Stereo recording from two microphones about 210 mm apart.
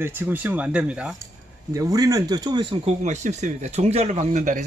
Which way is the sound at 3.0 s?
35° right (ahead or behind).